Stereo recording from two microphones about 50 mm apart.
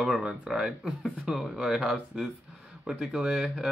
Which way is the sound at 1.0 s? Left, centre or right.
Centre.